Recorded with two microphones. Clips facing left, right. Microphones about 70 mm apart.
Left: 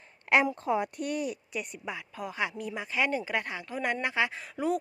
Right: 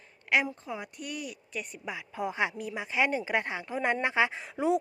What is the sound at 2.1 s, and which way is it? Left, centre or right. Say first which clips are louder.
Speech: right 4 dB; right.